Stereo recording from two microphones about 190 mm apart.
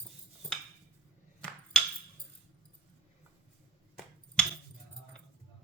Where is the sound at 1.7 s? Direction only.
5° left (ahead or behind).